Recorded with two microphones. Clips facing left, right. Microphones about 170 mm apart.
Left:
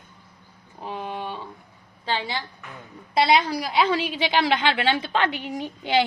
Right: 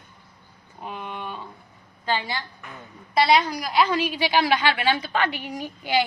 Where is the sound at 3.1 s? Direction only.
25° left (ahead or behind).